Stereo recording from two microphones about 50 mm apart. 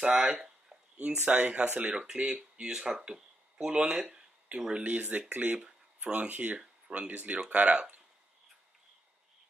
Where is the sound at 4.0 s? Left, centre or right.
Centre.